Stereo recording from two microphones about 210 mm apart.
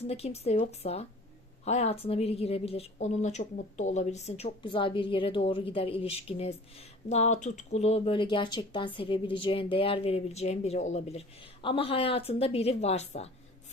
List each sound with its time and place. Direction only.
0.1 s a woman's voice: 30° left (ahead or behind)